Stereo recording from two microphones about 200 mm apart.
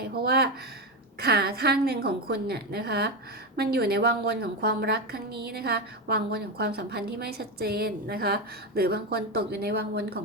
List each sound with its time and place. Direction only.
0.0 s a woman's voice: 50° right (ahead or behind)